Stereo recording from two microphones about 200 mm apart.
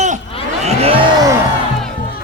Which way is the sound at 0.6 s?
30° right (ahead or behind).